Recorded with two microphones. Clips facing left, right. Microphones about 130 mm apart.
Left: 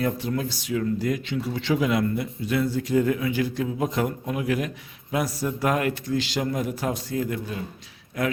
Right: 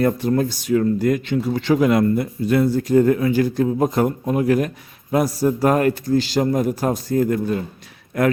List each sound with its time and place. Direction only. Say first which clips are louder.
0.0 s a man's voice: right 8 dB; 50° right (ahead or behind)